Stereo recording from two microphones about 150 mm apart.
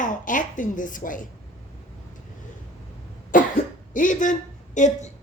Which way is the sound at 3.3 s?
65° left (ahead or behind).